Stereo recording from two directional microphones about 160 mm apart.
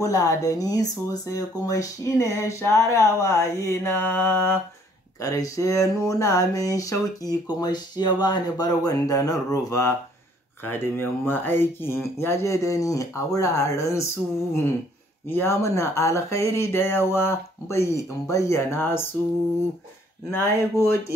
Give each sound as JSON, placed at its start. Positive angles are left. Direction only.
{"t": 0.0, "sound": "speech", "side_deg": 20}
{"t": 15.2, "sound": "speech", "side_deg": 15}
{"t": 20.2, "sound": "speech", "side_deg": 15}